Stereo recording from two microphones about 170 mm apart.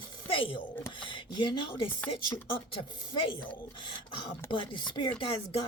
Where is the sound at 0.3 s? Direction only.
30° left (ahead or behind).